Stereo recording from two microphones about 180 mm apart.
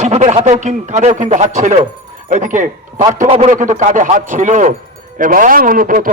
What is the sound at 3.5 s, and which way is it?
A man's voice, 45° right (ahead or behind).